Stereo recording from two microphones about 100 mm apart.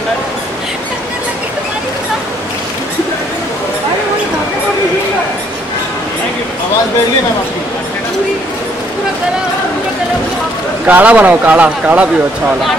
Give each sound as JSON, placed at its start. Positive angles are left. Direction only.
{"t": 10.9, "sound": "speech", "side_deg": -15}